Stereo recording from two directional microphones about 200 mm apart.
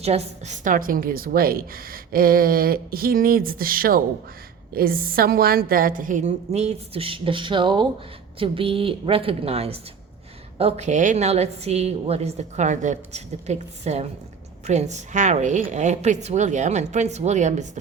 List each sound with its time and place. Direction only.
0.0 s a woman's voice: 30° right (ahead or behind)